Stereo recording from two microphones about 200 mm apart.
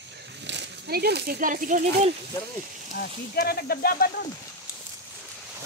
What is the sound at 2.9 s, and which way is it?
Speech, 50° left (ahead or behind).